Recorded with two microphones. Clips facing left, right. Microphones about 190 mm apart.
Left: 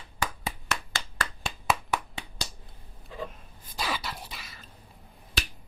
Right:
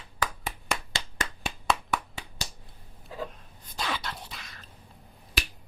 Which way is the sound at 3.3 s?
5° left (ahead or behind).